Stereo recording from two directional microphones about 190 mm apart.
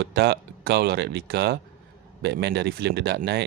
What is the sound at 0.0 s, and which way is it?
A man's voice, 60° right (ahead or behind).